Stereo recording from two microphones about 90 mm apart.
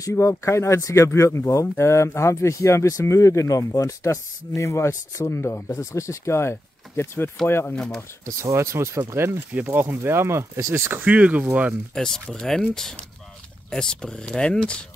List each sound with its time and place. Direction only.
0.0 s speech: 35° left (ahead or behind)
7.7 s speech: 5° left (ahead or behind)
8.3 s speech: 35° right (ahead or behind); by 11.7 s 15° right (ahead or behind)
11.9 s speech: 5° left (ahead or behind)